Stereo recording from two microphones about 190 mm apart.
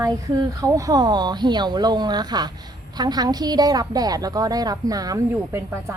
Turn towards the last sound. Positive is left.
turn(degrees=-15)  # may be behind; listen again after turning